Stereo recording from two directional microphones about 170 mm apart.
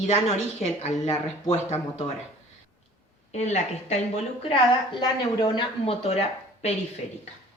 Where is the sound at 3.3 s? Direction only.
40° left (ahead or behind).